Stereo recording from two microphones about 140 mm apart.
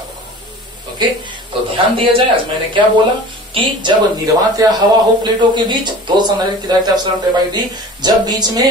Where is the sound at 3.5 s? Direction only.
35° right (ahead or behind).